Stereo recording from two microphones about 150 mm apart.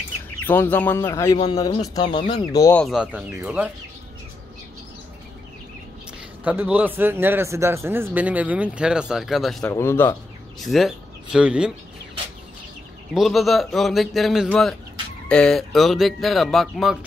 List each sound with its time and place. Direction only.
0.5 s speech: 15° left (ahead or behind)
1.0 s speech: 25° left (ahead or behind)
2.7 s speech: 5° left (ahead or behind)
3.0 s speech: 10° right (ahead or behind)
6.4 s speech: 10° right (ahead or behind)
9.7 s speech: 15° left (ahead or behind)
10.6 s speech: centre (ahead or behind)
13.1 s speech: centre (ahead or behind)